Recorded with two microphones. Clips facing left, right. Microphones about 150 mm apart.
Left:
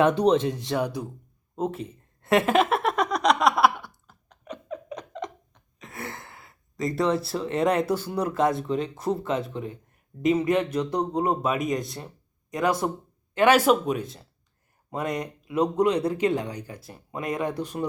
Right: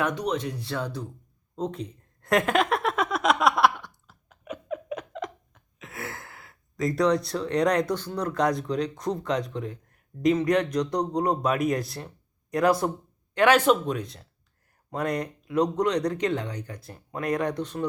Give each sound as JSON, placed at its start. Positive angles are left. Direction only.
{"t": 0.0, "sound": "speech", "side_deg": 30}
{"t": 1.5, "sound": "a sound", "side_deg": 5}
{"t": 5.8, "sound": "speech", "side_deg": 0}